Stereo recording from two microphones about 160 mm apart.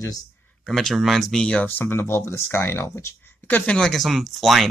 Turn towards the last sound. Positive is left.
turn(degrees=0)  # may be behind; listen again after turning